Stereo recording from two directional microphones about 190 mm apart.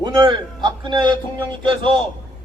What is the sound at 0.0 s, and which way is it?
A man's voice, 25° right (ahead or behind).